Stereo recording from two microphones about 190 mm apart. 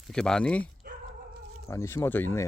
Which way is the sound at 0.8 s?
55° right (ahead or behind).